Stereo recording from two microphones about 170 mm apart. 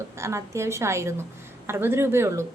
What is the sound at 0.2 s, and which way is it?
Speech, 15° right (ahead or behind).